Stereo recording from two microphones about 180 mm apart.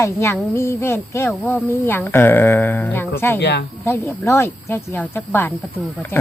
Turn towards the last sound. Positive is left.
turn(degrees=10)  # may be behind; listen again after turning